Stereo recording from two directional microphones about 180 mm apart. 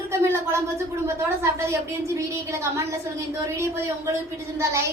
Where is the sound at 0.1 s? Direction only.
15° right (ahead or behind).